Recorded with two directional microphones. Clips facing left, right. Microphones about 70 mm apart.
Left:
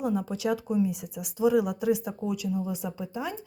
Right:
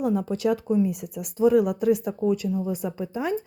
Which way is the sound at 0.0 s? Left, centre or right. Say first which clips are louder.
Right 4 dB; right.